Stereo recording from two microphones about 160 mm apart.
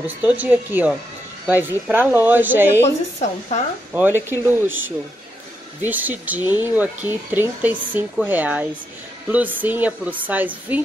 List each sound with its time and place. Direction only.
0.0 s speech: 10° right (ahead or behind)
3.2 s a woman's voice: 45° left (ahead or behind)
3.9 s speech: 10° right (ahead or behind)